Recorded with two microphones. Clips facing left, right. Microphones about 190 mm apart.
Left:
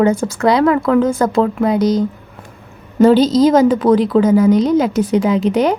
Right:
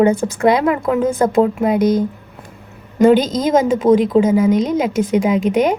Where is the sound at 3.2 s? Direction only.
50° right (ahead or behind).